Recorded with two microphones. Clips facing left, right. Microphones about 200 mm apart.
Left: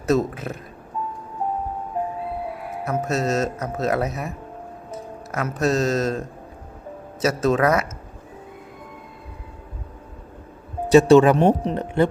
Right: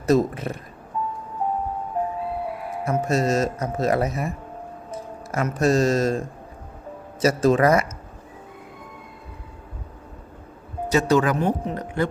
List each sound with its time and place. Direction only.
0.1 s speech: 5° left (ahead or behind)
2.9 s speech: centre (ahead or behind)
10.9 s speech: 25° left (ahead or behind)